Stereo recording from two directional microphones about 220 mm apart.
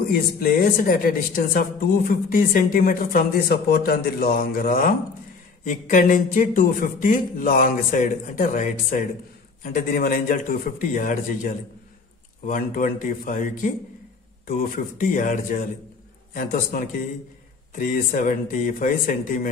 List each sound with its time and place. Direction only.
0.4 s speech: 40° left (ahead or behind)